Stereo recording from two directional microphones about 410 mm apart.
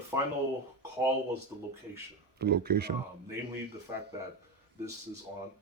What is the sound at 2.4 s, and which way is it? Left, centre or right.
Speech, right.